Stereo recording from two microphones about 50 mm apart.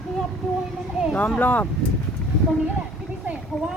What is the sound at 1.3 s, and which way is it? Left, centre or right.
Speech, left.